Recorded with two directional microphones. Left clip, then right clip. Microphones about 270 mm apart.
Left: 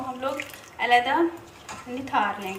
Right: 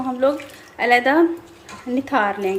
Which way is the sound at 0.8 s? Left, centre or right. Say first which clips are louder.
Right 5 dB; centre.